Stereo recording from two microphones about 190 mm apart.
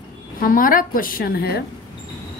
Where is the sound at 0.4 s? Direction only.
45° left (ahead or behind).